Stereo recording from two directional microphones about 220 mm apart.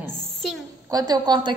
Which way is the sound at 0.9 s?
20° right (ahead or behind).